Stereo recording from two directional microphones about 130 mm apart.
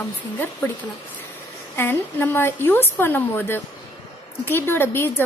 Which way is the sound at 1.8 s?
15° left (ahead or behind).